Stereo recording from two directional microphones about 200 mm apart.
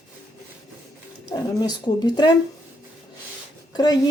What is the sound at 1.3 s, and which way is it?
A woman's voice, 20° left (ahead or behind).